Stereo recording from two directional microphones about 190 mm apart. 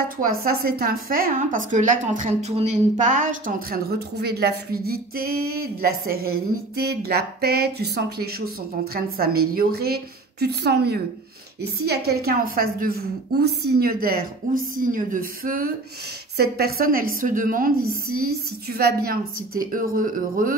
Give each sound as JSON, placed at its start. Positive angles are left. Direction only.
{"t": 0.2, "sound": "a woman's voice", "side_deg": -50}